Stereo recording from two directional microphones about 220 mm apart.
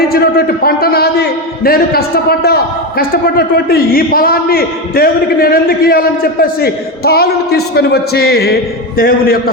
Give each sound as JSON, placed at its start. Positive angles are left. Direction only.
{"t": 0.1, "sound": "a man's voice", "side_deg": 45}
{"t": 3.0, "sound": "a man's voice", "side_deg": 40}